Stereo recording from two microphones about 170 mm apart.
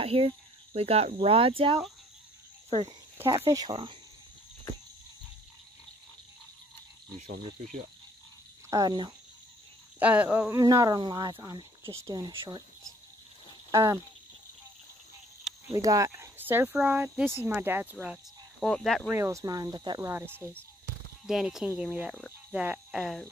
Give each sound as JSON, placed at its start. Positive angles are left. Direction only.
{"t": 0.0, "sound": "cricket", "side_deg": -35}
{"t": 0.7, "sound": "speech", "side_deg": -35}
{"t": 3.4, "sound": "speech", "side_deg": -20}
{"t": 8.6, "sound": "speech", "side_deg": -20}
{"t": 9.9, "sound": "speech", "side_deg": -10}
{"t": 10.6, "sound": "speech", "side_deg": -20}
{"t": 13.7, "sound": "speech", "side_deg": -20}
{"t": 15.7, "sound": "speech", "side_deg": -20}
{"t": 19.1, "sound": "speech", "side_deg": -15}
{"t": 20.1, "sound": "speech", "side_deg": -10}